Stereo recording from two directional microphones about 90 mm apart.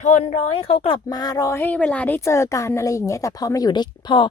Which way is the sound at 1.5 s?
20° left (ahead or behind).